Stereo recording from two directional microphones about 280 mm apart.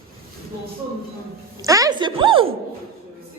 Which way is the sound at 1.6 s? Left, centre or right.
Centre.